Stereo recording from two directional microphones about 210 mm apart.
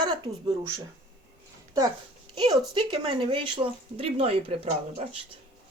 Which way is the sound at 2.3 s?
20° right (ahead or behind).